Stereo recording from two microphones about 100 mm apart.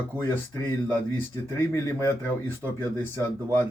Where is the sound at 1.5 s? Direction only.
20° left (ahead or behind).